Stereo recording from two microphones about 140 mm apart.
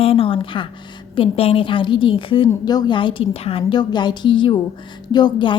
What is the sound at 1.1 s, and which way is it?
A woman's voice, 40° left (ahead or behind).